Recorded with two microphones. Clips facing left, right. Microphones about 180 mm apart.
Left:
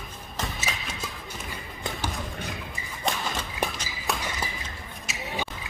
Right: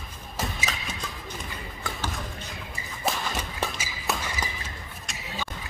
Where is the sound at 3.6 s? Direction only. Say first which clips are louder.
Left 2 dB; 15° left (ahead or behind).